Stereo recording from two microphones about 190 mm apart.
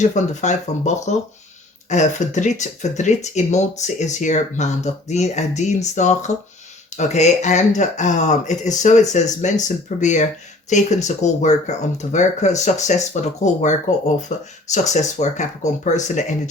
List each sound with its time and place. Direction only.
0.0 s speech: 40° left (ahead or behind)